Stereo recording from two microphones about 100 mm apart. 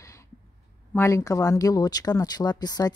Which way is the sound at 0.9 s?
30° left (ahead or behind).